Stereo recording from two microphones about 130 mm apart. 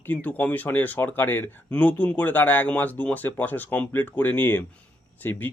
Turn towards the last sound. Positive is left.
turn(degrees=15)  # may be behind; listen again after turning